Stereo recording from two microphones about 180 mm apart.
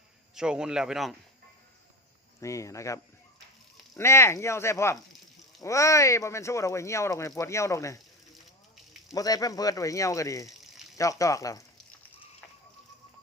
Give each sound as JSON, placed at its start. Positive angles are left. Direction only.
{"t": 0.3, "sound": "speech", "side_deg": -5}
{"t": 2.4, "sound": "speech", "side_deg": 15}
{"t": 9.1, "sound": "speech", "side_deg": 20}